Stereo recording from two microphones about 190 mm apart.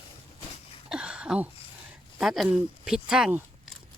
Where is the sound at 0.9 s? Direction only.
5° right (ahead or behind).